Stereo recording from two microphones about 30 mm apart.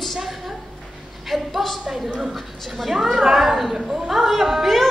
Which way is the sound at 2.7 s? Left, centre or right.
Centre.